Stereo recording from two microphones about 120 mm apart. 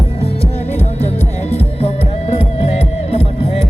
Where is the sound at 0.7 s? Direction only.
65° left (ahead or behind).